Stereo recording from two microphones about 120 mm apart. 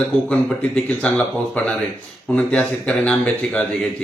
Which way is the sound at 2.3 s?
10° left (ahead or behind).